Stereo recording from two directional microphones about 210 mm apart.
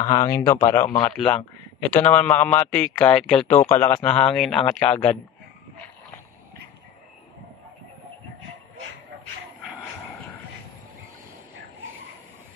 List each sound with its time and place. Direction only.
0.0 s a man's voice: 15° left (ahead or behind)
1.3 s a man's voice: 5° left (ahead or behind)